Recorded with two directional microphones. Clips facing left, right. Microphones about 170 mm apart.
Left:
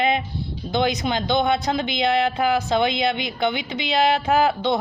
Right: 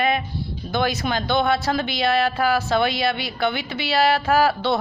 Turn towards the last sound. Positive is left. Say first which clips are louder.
# even
turn(degrees=20)  # may be behind; listen again after turning